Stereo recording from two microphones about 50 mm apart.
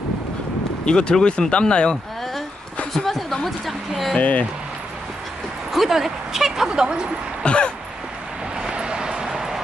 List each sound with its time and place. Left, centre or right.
0.9 s speech: centre
2.9 s speech: centre
4.2 s speech: left
5.7 s speech: centre
7.4 s speech: left
8.5 s vehicle: centre